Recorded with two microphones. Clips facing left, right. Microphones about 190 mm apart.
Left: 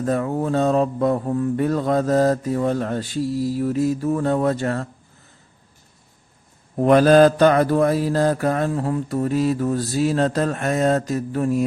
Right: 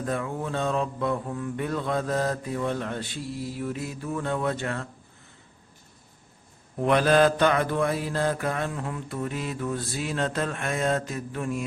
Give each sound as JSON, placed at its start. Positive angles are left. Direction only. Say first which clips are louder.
{"t": 0.0, "sound": "speech", "louder": "left 8 dB", "side_deg": 40}
{"t": 6.7, "sound": "speech", "louder": "left 8 dB", "side_deg": 40}